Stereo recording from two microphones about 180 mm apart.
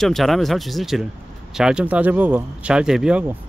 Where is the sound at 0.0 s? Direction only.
Centre (ahead or behind).